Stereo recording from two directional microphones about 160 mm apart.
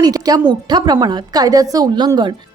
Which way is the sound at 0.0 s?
25° right (ahead or behind).